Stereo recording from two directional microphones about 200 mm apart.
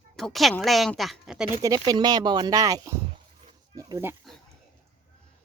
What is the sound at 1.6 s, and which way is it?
A child's voice, 20° right (ahead or behind).